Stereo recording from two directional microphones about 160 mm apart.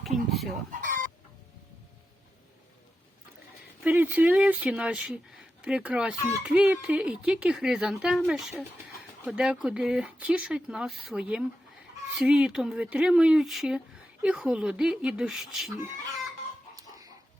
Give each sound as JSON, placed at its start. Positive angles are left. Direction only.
{"t": 0.0, "sound": "speech", "side_deg": 0}
{"t": 0.7, "sound": "chicken", "side_deg": -55}
{"t": 3.8, "sound": "speech", "side_deg": -10}
{"t": 16.7, "sound": "chicken", "side_deg": -25}